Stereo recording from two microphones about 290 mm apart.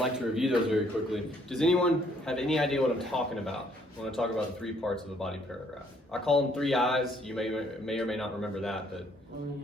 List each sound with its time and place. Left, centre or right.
0.0 s a man's voice: centre